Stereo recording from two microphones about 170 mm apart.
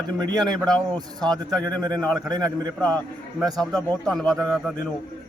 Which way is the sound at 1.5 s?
Centre (ahead or behind).